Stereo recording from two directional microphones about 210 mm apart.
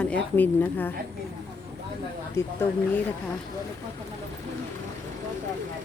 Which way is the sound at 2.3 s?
10° left (ahead or behind).